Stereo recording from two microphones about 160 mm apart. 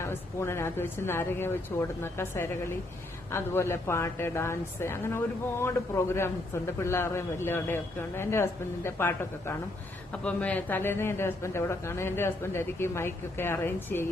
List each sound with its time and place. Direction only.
0.0 s a man's voice: 15° left (ahead or behind)